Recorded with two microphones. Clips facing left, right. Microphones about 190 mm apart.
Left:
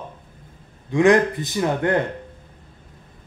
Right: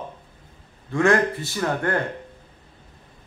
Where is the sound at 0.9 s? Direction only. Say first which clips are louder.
Left 4 dB; 15° left (ahead or behind).